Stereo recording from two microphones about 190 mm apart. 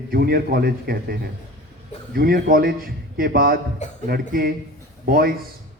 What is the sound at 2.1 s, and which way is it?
A man's voice, 55° right (ahead or behind).